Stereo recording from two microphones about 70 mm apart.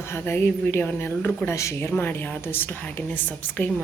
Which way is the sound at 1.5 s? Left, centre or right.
Left.